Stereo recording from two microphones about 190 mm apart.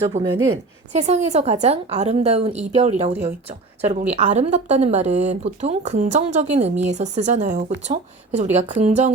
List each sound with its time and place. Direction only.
0.1 s speech: 40° right (ahead or behind)